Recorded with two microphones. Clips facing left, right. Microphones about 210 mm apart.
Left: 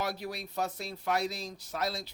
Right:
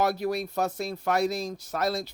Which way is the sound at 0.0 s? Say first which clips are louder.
Right 9 dB; 45° right (ahead or behind).